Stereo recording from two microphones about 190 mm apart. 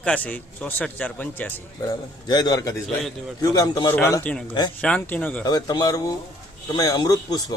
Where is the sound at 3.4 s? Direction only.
20° left (ahead or behind).